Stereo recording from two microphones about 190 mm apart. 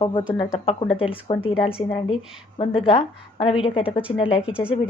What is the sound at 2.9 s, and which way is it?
A woman's voice, 30° left (ahead or behind).